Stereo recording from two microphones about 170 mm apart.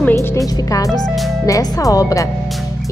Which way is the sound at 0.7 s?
20° left (ahead or behind).